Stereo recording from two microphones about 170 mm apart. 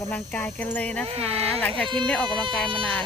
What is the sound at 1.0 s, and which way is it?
Speech, 35° right (ahead or behind).